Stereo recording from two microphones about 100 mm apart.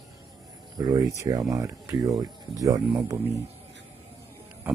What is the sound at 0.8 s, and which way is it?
Speech, 35° right (ahead or behind).